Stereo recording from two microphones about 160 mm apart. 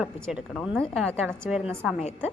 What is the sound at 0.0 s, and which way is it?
A woman's voice, 5° right (ahead or behind).